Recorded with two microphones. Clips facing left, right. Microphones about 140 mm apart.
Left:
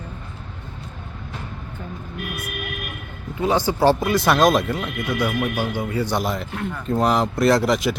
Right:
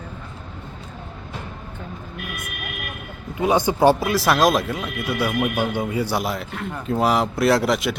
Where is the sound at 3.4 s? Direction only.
15° right (ahead or behind).